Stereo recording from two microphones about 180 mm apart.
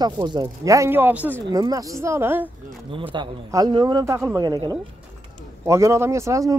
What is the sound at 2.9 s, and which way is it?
A man's voice, 30° right (ahead or behind).